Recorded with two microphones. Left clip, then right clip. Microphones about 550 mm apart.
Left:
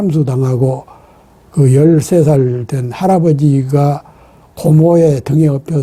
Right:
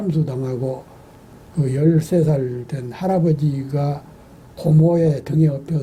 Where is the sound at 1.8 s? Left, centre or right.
Left.